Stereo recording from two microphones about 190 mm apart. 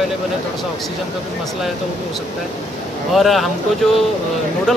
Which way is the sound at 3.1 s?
Centre (ahead or behind).